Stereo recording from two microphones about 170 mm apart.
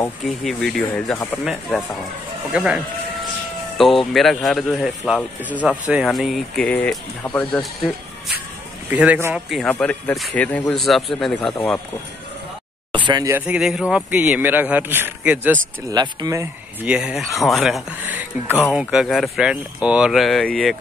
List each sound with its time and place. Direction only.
0.4 s speech: centre (ahead or behind)
1.4 s speech: 5° right (ahead or behind)
8.9 s speech: 10° right (ahead or behind)
9.7 s speech: 10° left (ahead or behind)
12.9 s speech: 25° right (ahead or behind)
13.5 s speech: 5° right (ahead or behind)
15.9 s speech: 25° right (ahead or behind)
16.8 s speech: 5° right (ahead or behind)
18.0 s a sound: 10° right (ahead or behind)
18.7 s speech: 5° right (ahead or behind)